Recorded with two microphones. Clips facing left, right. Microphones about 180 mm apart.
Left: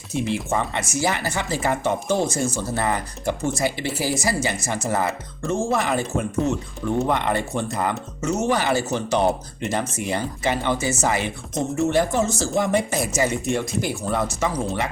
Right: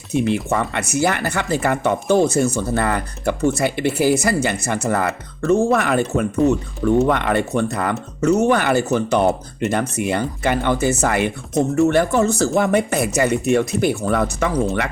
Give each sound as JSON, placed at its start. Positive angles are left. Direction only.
{"t": 0.1, "sound": "speech", "side_deg": -60}